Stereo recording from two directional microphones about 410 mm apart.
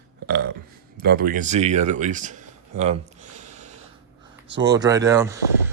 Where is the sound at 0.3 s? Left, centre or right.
Right.